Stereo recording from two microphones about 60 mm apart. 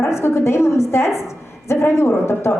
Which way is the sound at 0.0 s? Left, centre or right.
Left.